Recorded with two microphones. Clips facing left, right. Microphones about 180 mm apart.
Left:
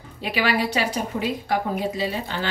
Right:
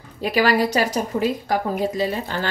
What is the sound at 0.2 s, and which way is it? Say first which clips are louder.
A woman's voice: right 5 dB; 45° right (ahead or behind).